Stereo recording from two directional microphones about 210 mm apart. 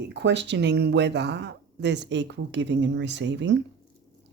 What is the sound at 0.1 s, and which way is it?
Speech, 55° right (ahead or behind).